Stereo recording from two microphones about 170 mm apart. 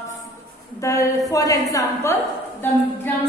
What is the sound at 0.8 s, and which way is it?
A woman's voice, 20° left (ahead or behind).